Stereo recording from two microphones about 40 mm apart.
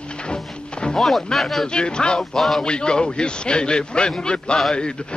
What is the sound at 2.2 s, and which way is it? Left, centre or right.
Speech, centre.